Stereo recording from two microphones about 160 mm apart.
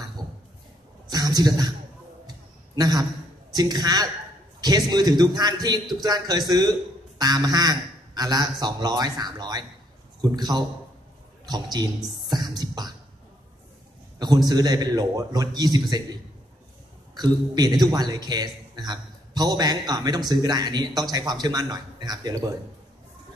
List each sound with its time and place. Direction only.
1.1 s speech: 25° right (ahead or behind)
2.2 s a sound: 25° right (ahead or behind)
3.5 s a man's voice: 25° right (ahead or behind)
12.3 s beatboxing: 25° right (ahead or behind)
14.1 s a man's voice: 25° right (ahead or behind)
17.1 s a man's voice: 25° right (ahead or behind)